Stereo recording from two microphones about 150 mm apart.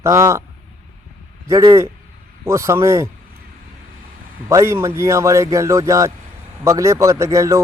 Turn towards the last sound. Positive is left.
turn(degrees=-20)  # may be behind; listen again after turning